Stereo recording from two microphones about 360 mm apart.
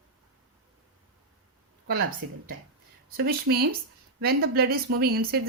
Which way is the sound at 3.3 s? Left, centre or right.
Right.